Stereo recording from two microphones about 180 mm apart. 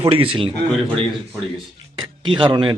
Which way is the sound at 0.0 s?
30° right (ahead or behind).